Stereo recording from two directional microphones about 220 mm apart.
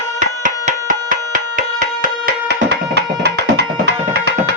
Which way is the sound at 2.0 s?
45° right (ahead or behind).